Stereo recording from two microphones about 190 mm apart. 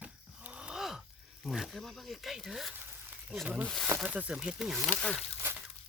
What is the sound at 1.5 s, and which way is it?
Speech, centre (ahead or behind).